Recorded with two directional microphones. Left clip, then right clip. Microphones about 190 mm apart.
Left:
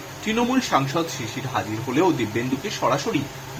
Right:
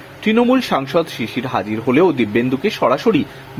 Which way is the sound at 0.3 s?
45° right (ahead or behind).